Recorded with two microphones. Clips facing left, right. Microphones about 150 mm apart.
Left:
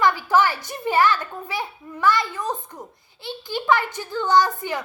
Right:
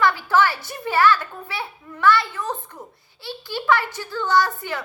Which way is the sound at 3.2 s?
20° left (ahead or behind).